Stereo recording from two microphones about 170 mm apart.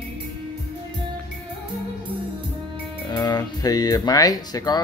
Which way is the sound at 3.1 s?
25° left (ahead or behind).